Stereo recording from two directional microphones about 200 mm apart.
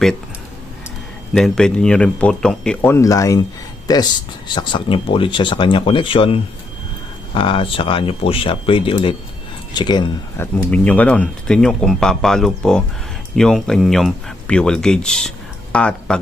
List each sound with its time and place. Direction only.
1.3 s speech: centre (ahead or behind); by 10.1 s 20° left (ahead or behind)
10.3 s speech: 10° left (ahead or behind)